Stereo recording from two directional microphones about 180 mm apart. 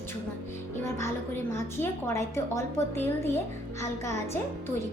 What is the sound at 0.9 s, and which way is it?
Music, 15° left (ahead or behind).